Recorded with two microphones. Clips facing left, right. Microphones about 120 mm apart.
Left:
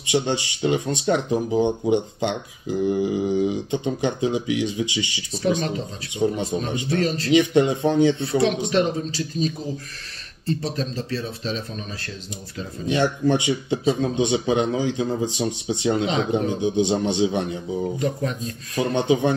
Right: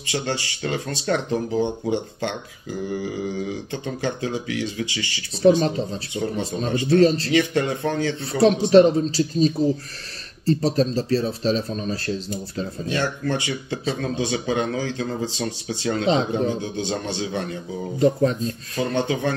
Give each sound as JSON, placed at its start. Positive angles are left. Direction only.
{"t": 0.0, "sound": "speech", "side_deg": 20}
{"t": 6.9, "sound": "speech", "side_deg": -30}
{"t": 7.3, "sound": "a man's voice", "side_deg": 20}
{"t": 8.4, "sound": "speech", "side_deg": -35}
{"t": 12.8, "sound": "a man's voice", "side_deg": 20}
{"t": 17.9, "sound": "speech", "side_deg": -30}
{"t": 18.8, "sound": "speech", "side_deg": 20}